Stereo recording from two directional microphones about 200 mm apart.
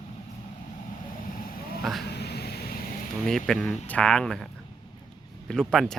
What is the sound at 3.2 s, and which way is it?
Speech, centre (ahead or behind).